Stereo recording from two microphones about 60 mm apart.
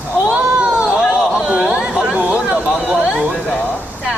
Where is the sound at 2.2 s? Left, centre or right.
Centre.